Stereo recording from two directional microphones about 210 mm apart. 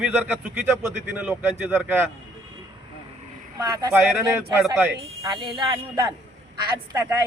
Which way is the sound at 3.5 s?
15° right (ahead or behind).